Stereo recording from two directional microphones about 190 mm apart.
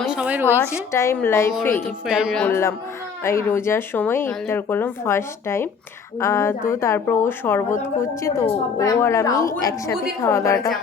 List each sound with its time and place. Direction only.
0.0 s a sound: 5° right (ahead or behind)
0.9 s speech: 10° left (ahead or behind)
2.0 s speech: 5° right (ahead or behind)
2.5 s speech: 15° left (ahead or behind)